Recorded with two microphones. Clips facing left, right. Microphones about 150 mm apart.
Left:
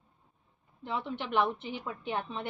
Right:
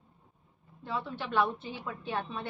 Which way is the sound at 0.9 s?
20° left (ahead or behind).